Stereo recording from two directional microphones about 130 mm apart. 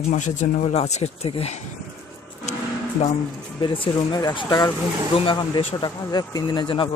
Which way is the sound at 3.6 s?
35° left (ahead or behind).